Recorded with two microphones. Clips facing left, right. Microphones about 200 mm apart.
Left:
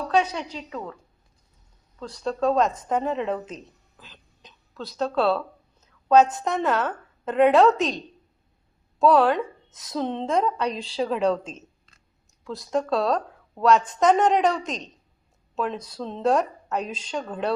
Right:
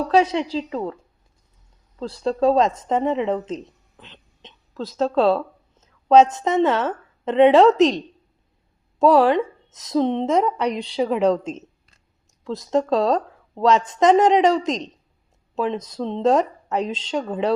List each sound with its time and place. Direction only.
0.1 s a woman's voice: 30° right (ahead or behind)
2.0 s a woman's voice: 30° right (ahead or behind)
5.1 s a sound: 20° right (ahead or behind)
6.3 s a woman's voice: 25° right (ahead or behind)
7.8 s a woman's voice: 90° right
9.0 s a woman's voice: 10° right (ahead or behind)
12.7 s speech: 20° right (ahead or behind)
13.7 s a woman's voice: 85° right
15.5 s a woman's voice: 20° right (ahead or behind)
16.8 s a woman's voice: 90° right